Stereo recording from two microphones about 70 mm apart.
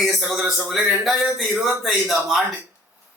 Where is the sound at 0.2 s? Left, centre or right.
Centre.